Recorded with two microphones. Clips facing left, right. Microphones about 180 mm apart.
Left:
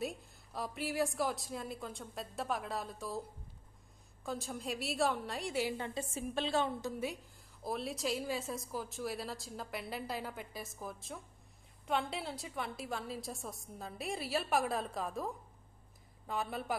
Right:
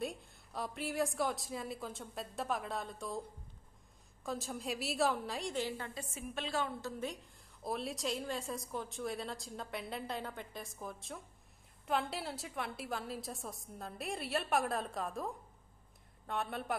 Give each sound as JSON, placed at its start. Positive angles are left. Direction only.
{"t": 0.0, "sound": "a woman's voice", "side_deg": 0}
{"t": 5.9, "sound": "a woman's voice", "side_deg": 30}
{"t": 7.6, "sound": "a woman's voice", "side_deg": 0}